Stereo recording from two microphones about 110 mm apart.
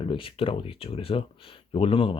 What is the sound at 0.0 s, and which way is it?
Speech, 55° left (ahead or behind).